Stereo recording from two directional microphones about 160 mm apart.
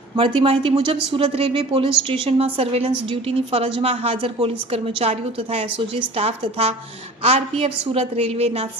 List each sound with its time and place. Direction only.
0.2 s a woman's voice: 35° right (ahead or behind)